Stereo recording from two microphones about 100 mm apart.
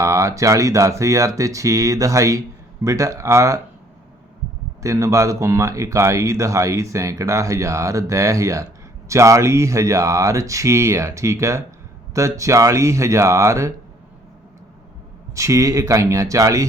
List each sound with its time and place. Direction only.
0.0 s speech: 30° right (ahead or behind)
4.8 s speech: 35° right (ahead or behind)
15.4 s speech: 30° right (ahead or behind)